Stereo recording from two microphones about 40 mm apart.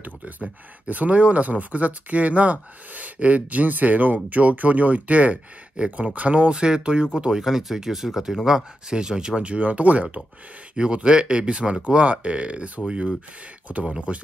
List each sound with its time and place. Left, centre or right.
0.8 s speech: right
6.5 s speech: right